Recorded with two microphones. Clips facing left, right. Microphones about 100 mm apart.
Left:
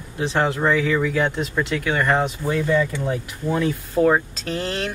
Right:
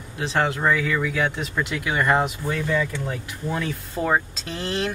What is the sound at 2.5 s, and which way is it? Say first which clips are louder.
Speech: left 4 dB; 25° left (ahead or behind).